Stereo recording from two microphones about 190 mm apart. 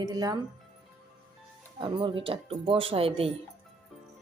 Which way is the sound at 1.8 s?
25° right (ahead or behind).